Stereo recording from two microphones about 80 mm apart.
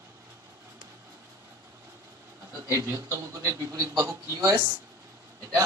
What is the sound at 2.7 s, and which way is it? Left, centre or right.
Speech, right.